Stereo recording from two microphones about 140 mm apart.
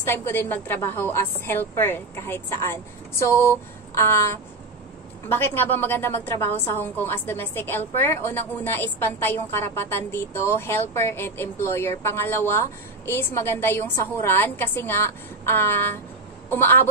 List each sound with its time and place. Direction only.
0.0 s a woman's voice: 15° left (ahead or behind)
3.9 s a sound: 20° left (ahead or behind)
5.3 s a woman's voice: 15° left (ahead or behind)